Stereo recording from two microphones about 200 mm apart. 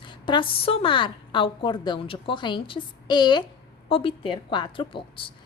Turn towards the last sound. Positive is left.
turn(degrees=25)  # may be behind; listen again after turning